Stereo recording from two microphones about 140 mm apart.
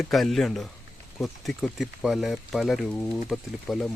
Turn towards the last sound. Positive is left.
turn(degrees=0)  # may be behind; listen again after turning